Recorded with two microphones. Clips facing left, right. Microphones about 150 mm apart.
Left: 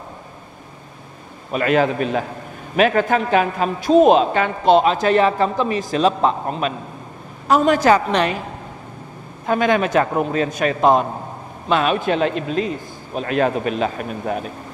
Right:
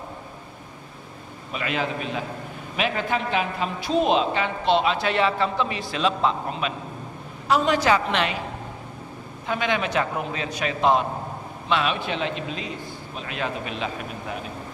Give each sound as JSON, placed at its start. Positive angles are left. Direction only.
{"t": 1.5, "sound": "a man's voice", "side_deg": 45}
{"t": 9.5, "sound": "a man's voice", "side_deg": 45}